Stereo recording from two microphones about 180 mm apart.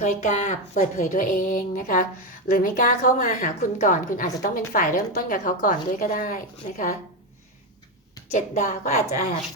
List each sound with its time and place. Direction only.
0.2 s a woman's voice: 45° left (ahead or behind)
8.3 s a woman's voice: 40° left (ahead or behind)